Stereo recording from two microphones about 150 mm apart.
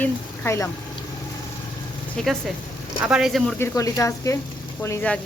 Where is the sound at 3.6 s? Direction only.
20° left (ahead or behind).